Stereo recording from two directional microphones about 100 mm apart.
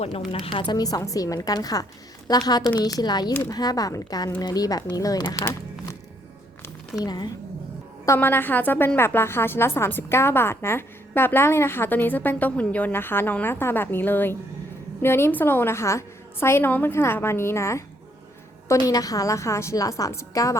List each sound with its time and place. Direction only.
0.3 s a woman's voice: 65° left (ahead or behind); by 5.2 s 40° left (ahead or behind)
7.0 s speech: 45° left (ahead or behind)
8.0 s a woman's voice: 25° left (ahead or behind)